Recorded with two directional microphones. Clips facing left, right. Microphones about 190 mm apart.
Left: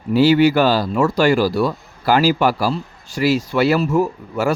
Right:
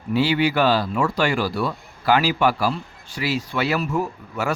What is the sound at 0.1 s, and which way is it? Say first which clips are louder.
Speech: left 7 dB; 40° left (ahead or behind).